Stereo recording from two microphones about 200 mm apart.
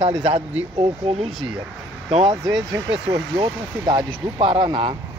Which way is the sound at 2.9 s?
75° right (ahead or behind).